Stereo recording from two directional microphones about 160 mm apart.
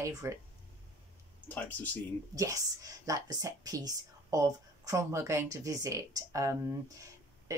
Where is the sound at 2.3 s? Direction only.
20° right (ahead or behind).